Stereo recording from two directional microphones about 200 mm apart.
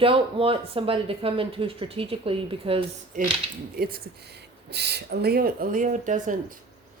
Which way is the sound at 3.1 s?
40° right (ahead or behind).